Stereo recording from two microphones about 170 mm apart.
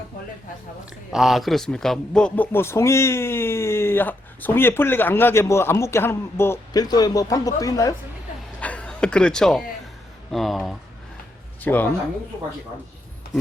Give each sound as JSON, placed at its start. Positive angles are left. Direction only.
{"t": 1.1, "sound": "a man's voice", "side_deg": 0}
{"t": 8.6, "sound": "a man's voice", "side_deg": 5}
{"t": 13.2, "sound": "a sound", "side_deg": 65}